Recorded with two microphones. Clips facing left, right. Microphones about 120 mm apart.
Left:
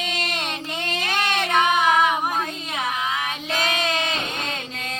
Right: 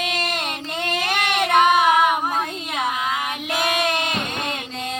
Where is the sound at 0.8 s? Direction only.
15° right (ahead or behind).